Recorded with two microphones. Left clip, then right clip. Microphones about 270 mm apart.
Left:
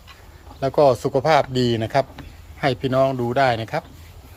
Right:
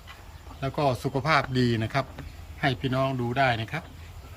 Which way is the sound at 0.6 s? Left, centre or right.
Centre.